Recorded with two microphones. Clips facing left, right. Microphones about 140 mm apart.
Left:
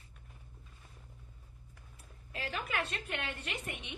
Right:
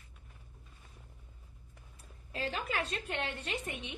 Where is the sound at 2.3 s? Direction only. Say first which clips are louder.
Right 2 dB; 30° right (ahead or behind).